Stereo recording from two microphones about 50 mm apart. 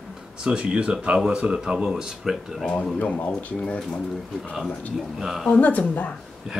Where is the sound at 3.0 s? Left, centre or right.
Left.